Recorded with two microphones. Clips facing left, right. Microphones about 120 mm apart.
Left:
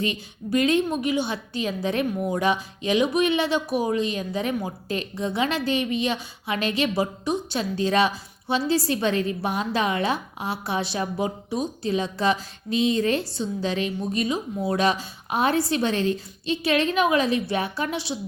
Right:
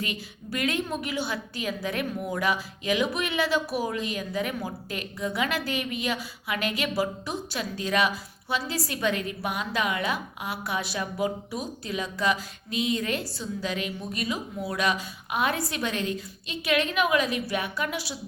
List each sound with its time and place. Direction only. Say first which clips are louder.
0.0 s a woman's voice: left 6 dB; 25° left (ahead or behind)